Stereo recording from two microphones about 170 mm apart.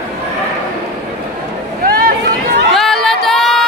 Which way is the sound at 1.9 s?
60° right (ahead or behind).